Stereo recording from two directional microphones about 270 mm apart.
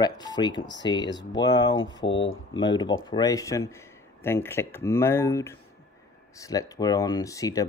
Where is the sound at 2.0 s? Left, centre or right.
Left.